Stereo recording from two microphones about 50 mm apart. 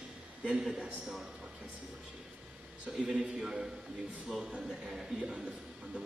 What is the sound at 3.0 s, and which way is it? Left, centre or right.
A man's voice, centre.